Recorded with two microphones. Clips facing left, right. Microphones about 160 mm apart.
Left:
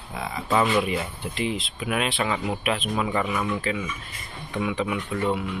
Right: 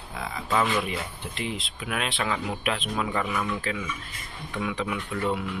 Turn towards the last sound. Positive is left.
turn(degrees=0)  # may be behind; listen again after turning